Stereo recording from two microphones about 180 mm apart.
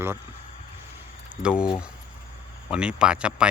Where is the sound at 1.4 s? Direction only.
5° right (ahead or behind).